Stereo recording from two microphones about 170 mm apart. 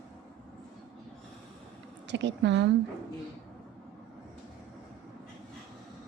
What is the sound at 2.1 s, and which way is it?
Speech, 90° right.